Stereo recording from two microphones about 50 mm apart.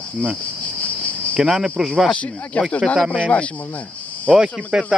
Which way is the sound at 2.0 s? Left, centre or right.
Left.